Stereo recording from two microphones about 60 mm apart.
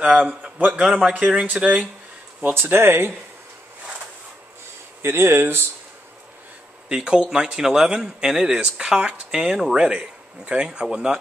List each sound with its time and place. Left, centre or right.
0.0 s a man's voice: centre
2.4 s speech: right
5.0 s speech: right
6.9 s speech: centre